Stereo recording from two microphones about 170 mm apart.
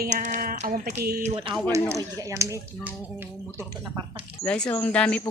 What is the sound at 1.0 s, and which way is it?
Speech, 65° right (ahead or behind).